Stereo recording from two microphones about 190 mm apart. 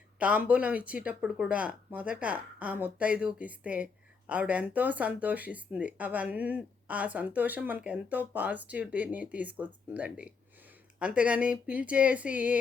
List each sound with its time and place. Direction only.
0.2 s speech: 5° right (ahead or behind)